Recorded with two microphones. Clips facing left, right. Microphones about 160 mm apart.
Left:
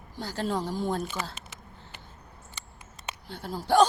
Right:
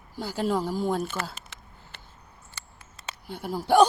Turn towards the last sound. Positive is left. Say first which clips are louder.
# right 2 dB
turn(degrees=-10)  # may be behind; listen again after turning